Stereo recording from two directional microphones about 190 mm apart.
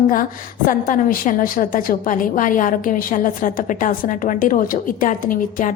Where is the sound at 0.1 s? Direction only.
45° left (ahead or behind).